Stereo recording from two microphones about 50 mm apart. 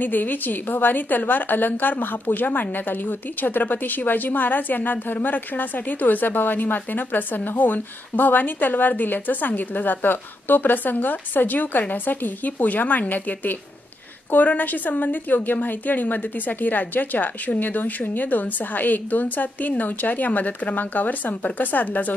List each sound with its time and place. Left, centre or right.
0.0 s a woman's voice: left